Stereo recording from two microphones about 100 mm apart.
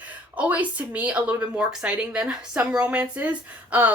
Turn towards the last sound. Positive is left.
turn(degrees=-15)  # may be behind; listen again after turning